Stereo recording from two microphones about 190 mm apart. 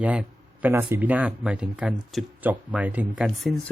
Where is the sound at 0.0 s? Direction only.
5° right (ahead or behind).